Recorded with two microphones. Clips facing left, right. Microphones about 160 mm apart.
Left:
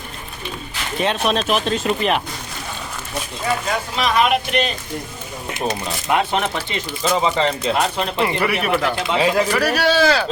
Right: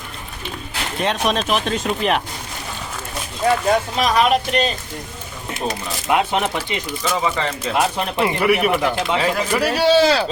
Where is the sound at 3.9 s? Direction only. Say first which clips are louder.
Right 1 dB; 35° right (ahead or behind).